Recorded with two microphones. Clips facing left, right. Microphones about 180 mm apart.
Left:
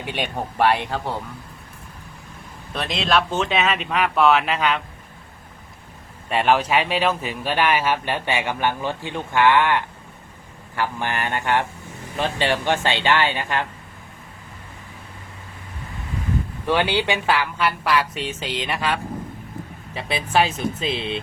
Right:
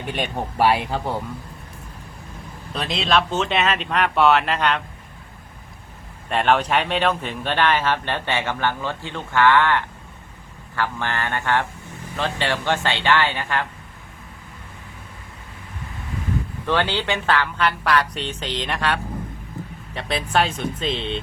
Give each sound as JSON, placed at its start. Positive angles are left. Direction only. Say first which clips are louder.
{"t": 0.0, "sound": "a woman's voice", "louder": "right 1 dB", "side_deg": 0}
{"t": 2.7, "sound": "a woman's voice", "louder": "even", "side_deg": 0}
{"t": 6.2, "sound": "a man's voice", "louder": "even", "side_deg": 5}
{"t": 16.6, "sound": "a woman's voice", "louder": "left 2 dB", "side_deg": 15}